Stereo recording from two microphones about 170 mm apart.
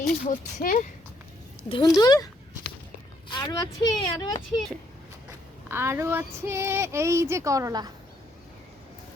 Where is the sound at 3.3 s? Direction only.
25° left (ahead or behind).